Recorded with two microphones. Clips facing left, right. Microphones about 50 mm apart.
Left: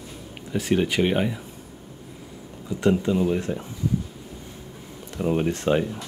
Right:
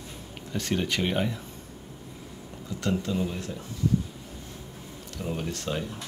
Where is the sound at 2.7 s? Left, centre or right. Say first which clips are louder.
Left 7 dB; centre.